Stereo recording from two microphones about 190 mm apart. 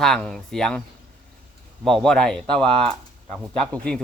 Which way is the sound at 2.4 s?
25° right (ahead or behind).